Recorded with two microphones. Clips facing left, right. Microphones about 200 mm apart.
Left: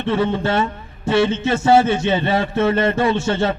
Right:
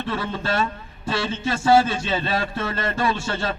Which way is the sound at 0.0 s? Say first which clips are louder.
Left 8 dB; 25° left (ahead or behind).